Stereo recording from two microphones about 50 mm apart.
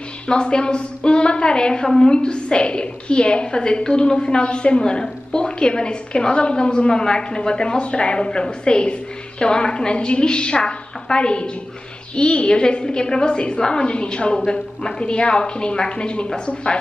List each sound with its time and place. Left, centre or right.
0.3 s a woman's voice: centre